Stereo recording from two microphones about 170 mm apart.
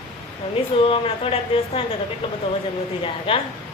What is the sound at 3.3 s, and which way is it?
Speech, 30° left (ahead or behind).